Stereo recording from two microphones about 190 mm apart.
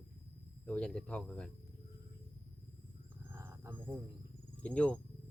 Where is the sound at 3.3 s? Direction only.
10° right (ahead or behind).